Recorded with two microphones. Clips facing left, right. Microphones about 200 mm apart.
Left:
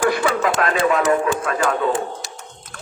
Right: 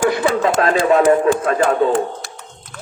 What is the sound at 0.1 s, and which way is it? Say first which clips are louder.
Speech: right 3 dB; 25° right (ahead or behind).